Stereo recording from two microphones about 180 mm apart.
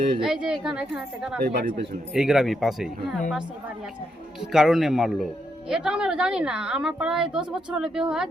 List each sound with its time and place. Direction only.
0.2 s speech: 5° right (ahead or behind)
1.5 s speech: 65° right (ahead or behind)
2.1 s speech: centre (ahead or behind)
4.5 s speech: centre (ahead or behind)